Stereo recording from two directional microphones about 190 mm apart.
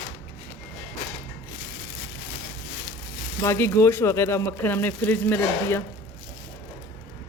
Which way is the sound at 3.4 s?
15° left (ahead or behind).